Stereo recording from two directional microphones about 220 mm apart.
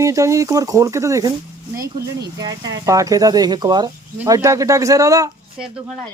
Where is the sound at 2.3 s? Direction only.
15° right (ahead or behind).